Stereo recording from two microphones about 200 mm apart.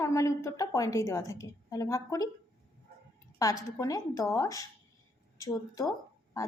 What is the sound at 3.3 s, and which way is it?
A woman's voice, 15° left (ahead or behind).